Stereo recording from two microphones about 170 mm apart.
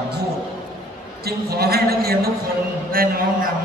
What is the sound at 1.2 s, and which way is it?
A man's voice, 65° right (ahead or behind).